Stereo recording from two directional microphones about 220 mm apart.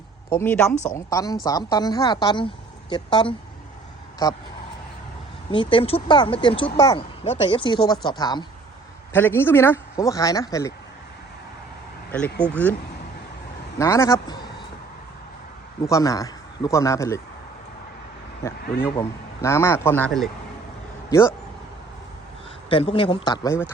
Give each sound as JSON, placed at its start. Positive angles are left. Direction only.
{"t": 0.3, "sound": "speech", "side_deg": 10}
{"t": 5.5, "sound": "speech", "side_deg": 20}
{"t": 12.4, "sound": "speech", "side_deg": 5}
{"t": 13.7, "sound": "speech", "side_deg": 15}
{"t": 15.8, "sound": "speech", "side_deg": 15}
{"t": 18.4, "sound": "speech", "side_deg": 15}
{"t": 20.1, "sound": "speech", "side_deg": 0}
{"t": 21.1, "sound": "speech", "side_deg": 10}
{"t": 22.7, "sound": "speech", "side_deg": 25}